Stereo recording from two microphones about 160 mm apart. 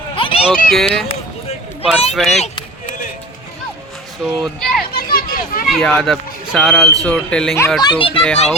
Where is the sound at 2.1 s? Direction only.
Centre (ahead or behind).